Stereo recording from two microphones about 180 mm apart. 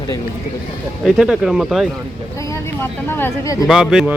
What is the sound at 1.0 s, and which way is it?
Speech, centre (ahead or behind).